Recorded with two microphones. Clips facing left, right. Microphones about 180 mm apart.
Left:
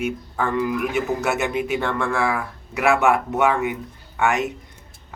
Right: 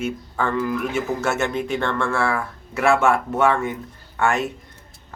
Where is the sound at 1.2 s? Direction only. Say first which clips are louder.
Even; 15° left (ahead or behind).